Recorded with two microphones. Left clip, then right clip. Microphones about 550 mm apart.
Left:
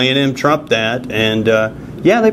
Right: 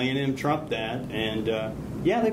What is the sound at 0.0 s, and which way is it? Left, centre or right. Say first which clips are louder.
Speech: left 13 dB; left.